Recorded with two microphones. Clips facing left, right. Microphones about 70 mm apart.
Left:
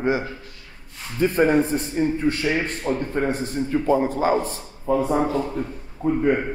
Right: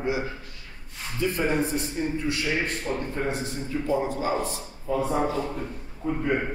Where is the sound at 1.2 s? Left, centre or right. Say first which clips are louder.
Left 7 dB; left.